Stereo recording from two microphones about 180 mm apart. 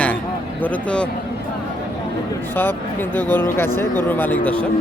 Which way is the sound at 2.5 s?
10° left (ahead or behind).